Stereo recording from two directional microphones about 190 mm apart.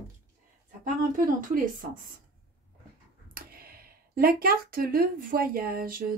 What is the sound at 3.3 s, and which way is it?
Speech, 55° right (ahead or behind).